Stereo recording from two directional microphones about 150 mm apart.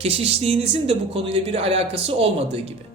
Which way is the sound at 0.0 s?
45° right (ahead or behind).